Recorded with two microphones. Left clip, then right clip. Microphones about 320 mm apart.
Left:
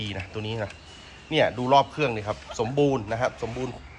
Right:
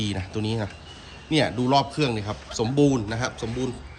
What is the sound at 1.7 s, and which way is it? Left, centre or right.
A man's voice, centre.